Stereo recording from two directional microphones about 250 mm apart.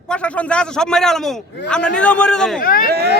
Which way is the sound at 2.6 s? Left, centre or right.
Left.